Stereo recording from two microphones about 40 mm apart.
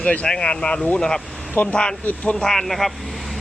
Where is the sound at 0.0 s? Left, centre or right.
Left.